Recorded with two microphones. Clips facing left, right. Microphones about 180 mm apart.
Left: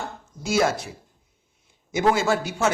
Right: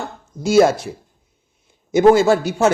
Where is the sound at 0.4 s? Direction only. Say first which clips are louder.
Right 9 dB; 30° right (ahead or behind).